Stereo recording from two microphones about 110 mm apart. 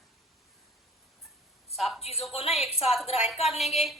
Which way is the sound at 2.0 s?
65° left (ahead or behind).